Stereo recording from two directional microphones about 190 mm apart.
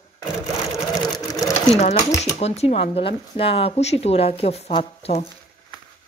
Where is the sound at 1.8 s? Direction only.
35° left (ahead or behind).